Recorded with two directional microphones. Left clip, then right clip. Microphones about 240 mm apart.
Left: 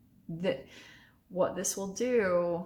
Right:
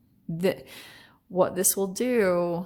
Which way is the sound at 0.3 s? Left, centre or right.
Right.